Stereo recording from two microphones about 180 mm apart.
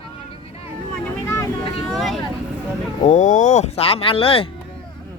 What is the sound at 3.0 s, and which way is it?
Speech, 40° left (ahead or behind).